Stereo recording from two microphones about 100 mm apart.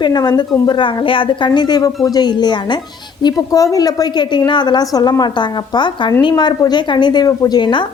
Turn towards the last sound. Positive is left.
turn(degrees=50)  # may be behind; listen again after turning